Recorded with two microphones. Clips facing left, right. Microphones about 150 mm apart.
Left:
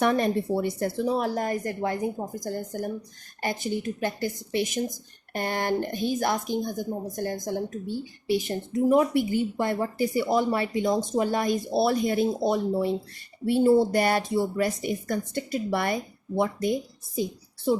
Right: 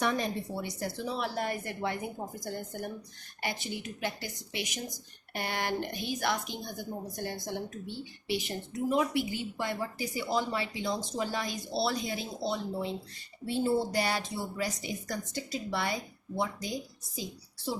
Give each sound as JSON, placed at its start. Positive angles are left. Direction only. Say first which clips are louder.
{"t": 0.0, "sound": "a woman's voice", "louder": "left 8 dB", "side_deg": 55}